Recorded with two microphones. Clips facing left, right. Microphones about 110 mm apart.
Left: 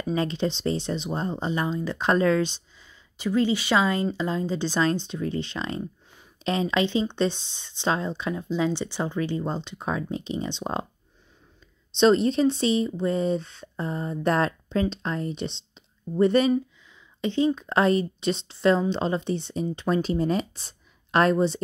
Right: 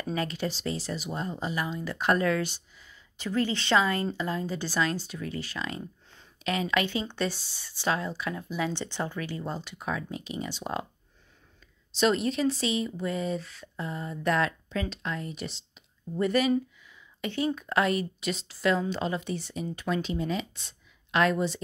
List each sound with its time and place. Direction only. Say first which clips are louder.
0.1 s speech: left 6 dB; 25° left (ahead or behind)
12.0 s speech: left 6 dB; 30° left (ahead or behind)